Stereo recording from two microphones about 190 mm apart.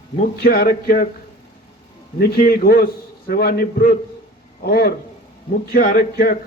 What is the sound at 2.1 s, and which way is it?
A man's voice, 55° left (ahead or behind).